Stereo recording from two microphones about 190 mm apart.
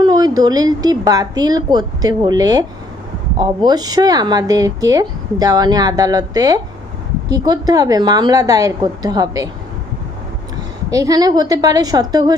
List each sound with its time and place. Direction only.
0.0 s speech: 20° right (ahead or behind)
10.9 s speech: 20° right (ahead or behind)